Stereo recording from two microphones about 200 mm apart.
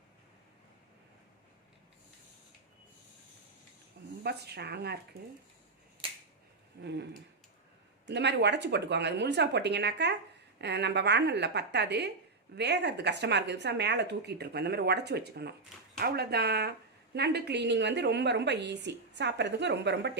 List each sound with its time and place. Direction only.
4.2 s speech: 55° right (ahead or behind)
6.8 s a woman's voice: 60° right (ahead or behind)